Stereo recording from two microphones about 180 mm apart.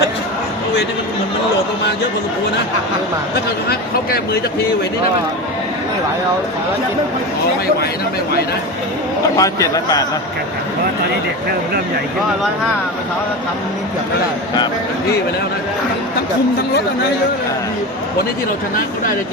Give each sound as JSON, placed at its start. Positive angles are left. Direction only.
{"t": 9.4, "sound": "a man's voice", "side_deg": 20}